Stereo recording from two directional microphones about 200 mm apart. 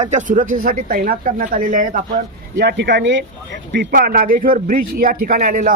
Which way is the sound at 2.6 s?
60° right (ahead or behind).